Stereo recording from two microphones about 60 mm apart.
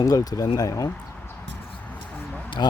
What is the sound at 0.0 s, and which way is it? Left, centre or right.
Speech, left.